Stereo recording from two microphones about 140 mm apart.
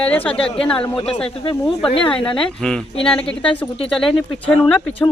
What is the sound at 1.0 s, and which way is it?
Speech, 40° left (ahead or behind).